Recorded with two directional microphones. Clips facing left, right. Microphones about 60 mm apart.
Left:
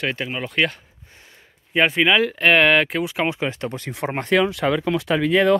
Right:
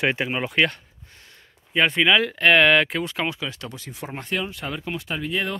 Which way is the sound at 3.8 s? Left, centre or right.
Left.